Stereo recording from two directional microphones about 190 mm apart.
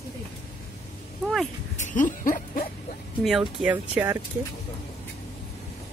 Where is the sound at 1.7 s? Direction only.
45° left (ahead or behind).